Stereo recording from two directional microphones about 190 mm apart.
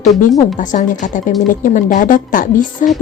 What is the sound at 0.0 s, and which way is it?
A woman's voice, 40° left (ahead or behind).